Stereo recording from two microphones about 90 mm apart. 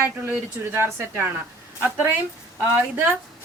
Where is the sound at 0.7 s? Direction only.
25° right (ahead or behind).